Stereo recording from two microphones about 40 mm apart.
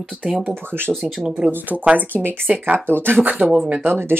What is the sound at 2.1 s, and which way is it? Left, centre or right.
Speech, right.